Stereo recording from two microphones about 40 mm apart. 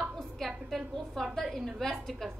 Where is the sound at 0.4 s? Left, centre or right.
Centre.